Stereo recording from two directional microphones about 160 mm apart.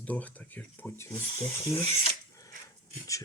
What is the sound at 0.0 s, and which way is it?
Speech, 10° left (ahead or behind).